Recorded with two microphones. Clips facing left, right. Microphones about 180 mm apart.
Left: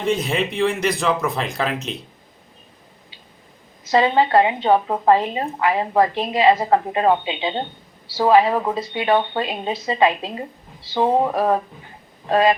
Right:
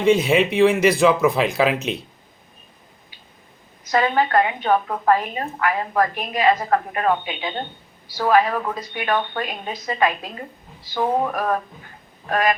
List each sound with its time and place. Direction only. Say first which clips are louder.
0.0 s speech: right 5 dB; centre (ahead or behind)
3.9 s a woman's voice: left 3 dB; 25° left (ahead or behind)